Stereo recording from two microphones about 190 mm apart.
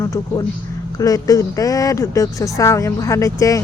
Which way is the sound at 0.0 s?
15° left (ahead or behind).